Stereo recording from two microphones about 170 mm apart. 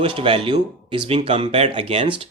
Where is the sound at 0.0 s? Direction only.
35° right (ahead or behind).